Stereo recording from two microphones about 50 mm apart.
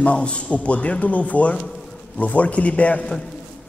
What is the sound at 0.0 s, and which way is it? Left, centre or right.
A man's voice, left.